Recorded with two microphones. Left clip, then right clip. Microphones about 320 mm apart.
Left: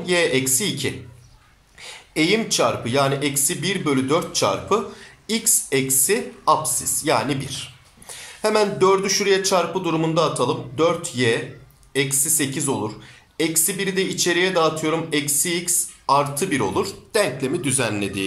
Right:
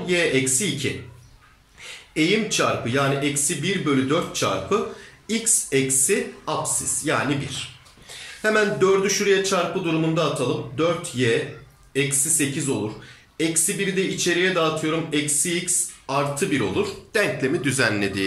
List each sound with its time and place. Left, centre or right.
0.0 s a man's voice: centre
10.8 s a man's voice: centre